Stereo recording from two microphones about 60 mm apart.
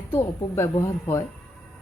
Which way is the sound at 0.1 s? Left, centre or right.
Left.